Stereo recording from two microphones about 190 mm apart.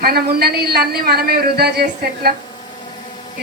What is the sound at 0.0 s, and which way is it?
Speech, 55° right (ahead or behind).